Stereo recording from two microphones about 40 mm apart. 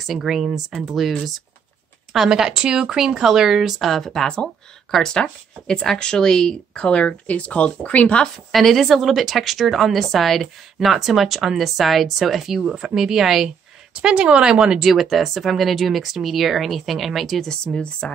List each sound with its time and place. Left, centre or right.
0.0 s speech: centre
2.2 s speech: centre
3.8 s speech: centre
6.7 s speech: left
8.5 s speech: centre
14.0 s speech: right
14.9 s speech: centre
17.7 s speech: centre